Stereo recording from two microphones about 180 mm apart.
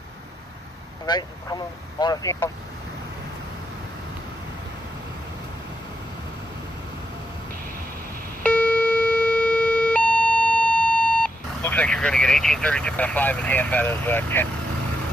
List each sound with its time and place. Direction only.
1.0 s speech: 20° left (ahead or behind)
8.4 s siren: 10° left (ahead or behind)